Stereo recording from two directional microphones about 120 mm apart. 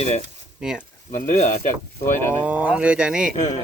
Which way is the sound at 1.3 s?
70° left (ahead or behind).